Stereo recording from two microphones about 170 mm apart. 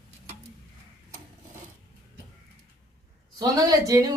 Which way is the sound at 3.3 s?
20° right (ahead or behind).